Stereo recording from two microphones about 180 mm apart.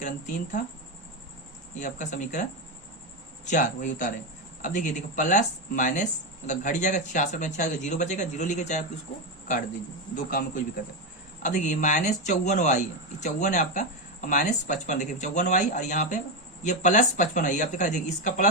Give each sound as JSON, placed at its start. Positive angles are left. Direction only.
{"t": 0.0, "sound": "speech", "side_deg": 45}
{"t": 1.7, "sound": "speech", "side_deg": 45}
{"t": 10.2, "sound": "speech", "side_deg": 50}